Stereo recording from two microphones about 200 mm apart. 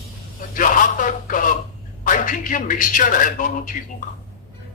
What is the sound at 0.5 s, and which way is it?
A man's voice, 40° left (ahead or behind).